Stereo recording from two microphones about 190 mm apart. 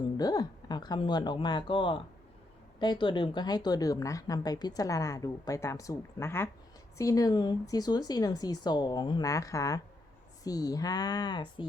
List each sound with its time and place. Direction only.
0.2 s a woman's voice: 20° left (ahead or behind)